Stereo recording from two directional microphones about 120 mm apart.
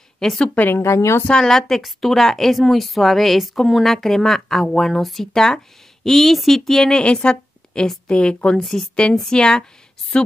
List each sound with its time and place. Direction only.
0.2 s a woman's voice: 5° left (ahead or behind)
0.6 s speech: 20° left (ahead or behind)
1.2 s a woman's voice: 5° left (ahead or behind)